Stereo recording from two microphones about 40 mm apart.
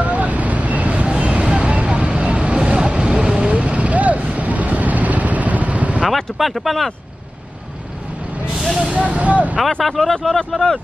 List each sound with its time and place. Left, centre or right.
0.0 s vehicle: right
6.0 s a sound: centre
8.5 s vehicle: centre
9.1 s speech: right
9.8 s speech: centre